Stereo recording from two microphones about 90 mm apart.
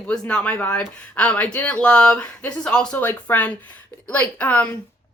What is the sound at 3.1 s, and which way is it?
Speech, 20° left (ahead or behind).